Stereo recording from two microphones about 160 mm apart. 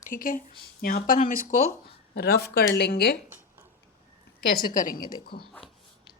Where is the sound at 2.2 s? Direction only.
80° left.